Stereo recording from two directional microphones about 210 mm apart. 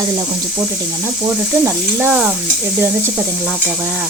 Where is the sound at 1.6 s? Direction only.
10° right (ahead or behind).